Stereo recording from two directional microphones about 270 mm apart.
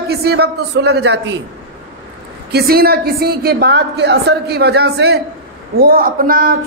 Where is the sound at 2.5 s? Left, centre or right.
Right.